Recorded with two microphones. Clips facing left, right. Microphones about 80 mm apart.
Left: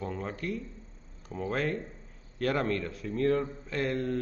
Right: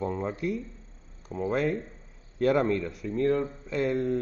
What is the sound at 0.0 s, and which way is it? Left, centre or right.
Speech, right.